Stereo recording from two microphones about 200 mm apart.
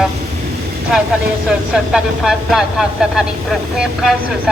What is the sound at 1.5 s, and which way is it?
Speech, 5° right (ahead or behind).